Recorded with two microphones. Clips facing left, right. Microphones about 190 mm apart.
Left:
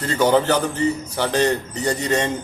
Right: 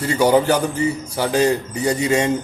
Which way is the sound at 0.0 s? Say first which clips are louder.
Right 2 dB; 10° right (ahead or behind).